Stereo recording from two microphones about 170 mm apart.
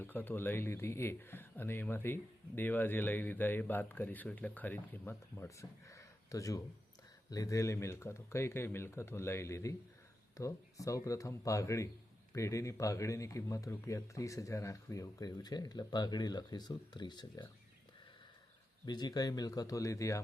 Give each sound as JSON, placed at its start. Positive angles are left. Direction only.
{"t": 0.0, "sound": "a man's voice", "side_deg": 10}
{"t": 18.9, "sound": "a man's voice", "side_deg": 25}